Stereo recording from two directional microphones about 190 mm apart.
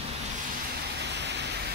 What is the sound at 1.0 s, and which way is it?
Vehicle, 65° right (ahead or behind).